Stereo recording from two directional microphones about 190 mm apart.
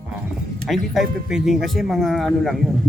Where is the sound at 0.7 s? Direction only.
Centre (ahead or behind).